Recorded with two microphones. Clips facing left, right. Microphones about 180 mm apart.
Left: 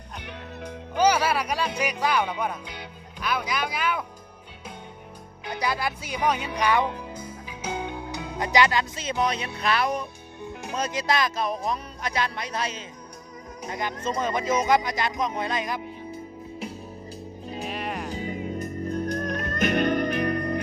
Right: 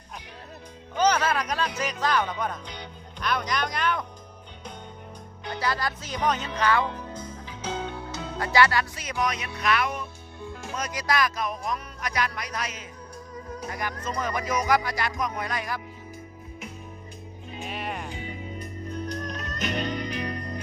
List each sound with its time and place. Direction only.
0.9 s speech: 10° left (ahead or behind)
5.5 s speech: 15° left (ahead or behind); by 10.1 s 35° left (ahead or behind)
10.4 s music: 20° left (ahead or behind)
17.7 s music: centre (ahead or behind)
18.1 s music: 40° left (ahead or behind); by 20.6 s 60° left (ahead or behind)